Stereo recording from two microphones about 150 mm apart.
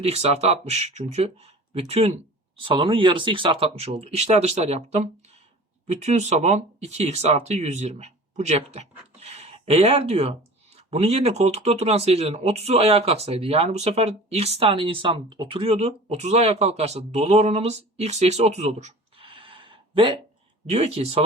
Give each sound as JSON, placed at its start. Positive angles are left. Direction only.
{"t": 0.0, "sound": "speech", "side_deg": -45}
{"t": 20.7, "sound": "speech", "side_deg": -45}